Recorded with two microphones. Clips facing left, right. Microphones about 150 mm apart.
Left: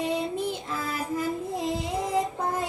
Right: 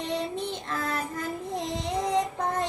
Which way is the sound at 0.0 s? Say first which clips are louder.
Left 3 dB; 10° left (ahead or behind).